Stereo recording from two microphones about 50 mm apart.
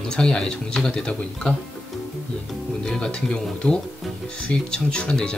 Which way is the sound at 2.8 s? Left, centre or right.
Centre.